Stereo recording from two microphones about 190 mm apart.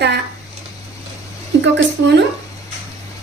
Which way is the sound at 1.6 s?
70° right (ahead or behind).